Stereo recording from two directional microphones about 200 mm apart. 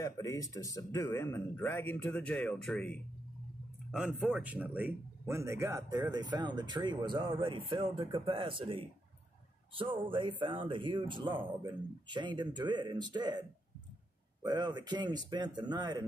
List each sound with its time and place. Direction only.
0.0 s a man's voice: 15° left (ahead or behind); by 8.8 s 25° right (ahead or behind)
10.0 s speech: 25° right (ahead or behind)
14.4 s speech: 20° right (ahead or behind)